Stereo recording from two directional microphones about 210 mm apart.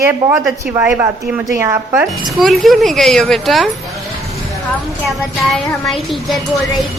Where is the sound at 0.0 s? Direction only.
10° right (ahead or behind).